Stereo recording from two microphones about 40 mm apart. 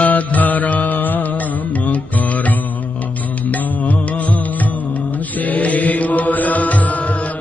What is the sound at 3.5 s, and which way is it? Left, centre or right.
Music, left.